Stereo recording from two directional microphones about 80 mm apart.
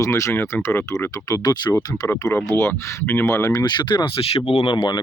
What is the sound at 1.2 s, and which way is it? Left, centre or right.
Speech, left.